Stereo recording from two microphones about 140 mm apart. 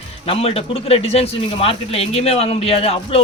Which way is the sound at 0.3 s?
45° left (ahead or behind).